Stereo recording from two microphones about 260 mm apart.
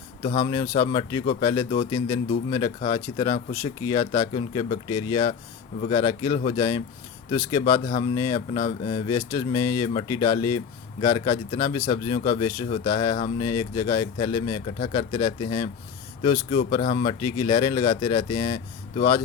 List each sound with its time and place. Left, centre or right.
0.2 s speech: left